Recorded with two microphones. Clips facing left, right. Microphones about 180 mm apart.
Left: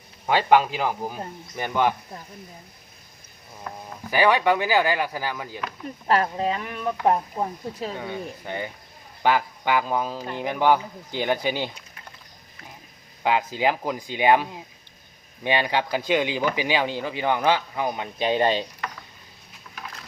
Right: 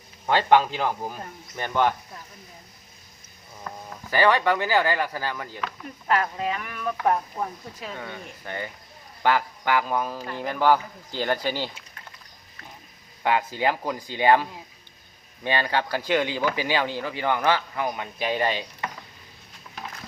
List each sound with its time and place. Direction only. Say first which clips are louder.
0.3 s speech: left 1 dB; 10° left (ahead or behind)
4.1 s speech: left 1 dB; 15° left (ahead or behind)
6.1 s speech: left 3 dB; 30° left (ahead or behind)
7.9 s speech: left 5 dB; 15° left (ahead or behind)
13.2 s speech: left 1 dB; 15° left (ahead or behind)